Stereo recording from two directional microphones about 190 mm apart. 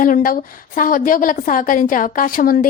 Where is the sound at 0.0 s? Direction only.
45° left (ahead or behind).